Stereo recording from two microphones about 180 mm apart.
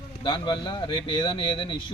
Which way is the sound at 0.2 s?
25° left (ahead or behind).